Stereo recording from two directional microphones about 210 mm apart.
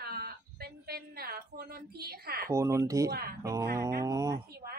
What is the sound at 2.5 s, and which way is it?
Speech, 15° right (ahead or behind).